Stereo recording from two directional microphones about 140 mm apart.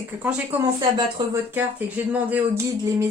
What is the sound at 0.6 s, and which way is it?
Speech, 30° right (ahead or behind).